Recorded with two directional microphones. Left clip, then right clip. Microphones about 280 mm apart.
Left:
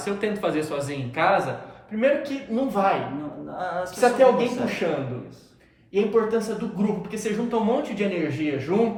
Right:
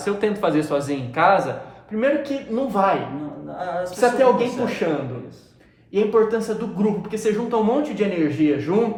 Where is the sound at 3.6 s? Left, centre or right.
Centre.